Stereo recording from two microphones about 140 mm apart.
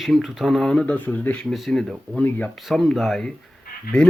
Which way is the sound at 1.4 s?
Centre (ahead or behind).